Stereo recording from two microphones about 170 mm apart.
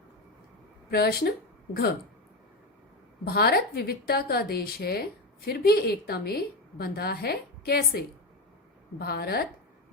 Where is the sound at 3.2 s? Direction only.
65° left (ahead or behind).